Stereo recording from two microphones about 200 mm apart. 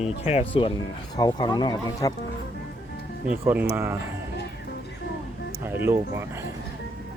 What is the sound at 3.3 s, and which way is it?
Speech, 10° right (ahead or behind).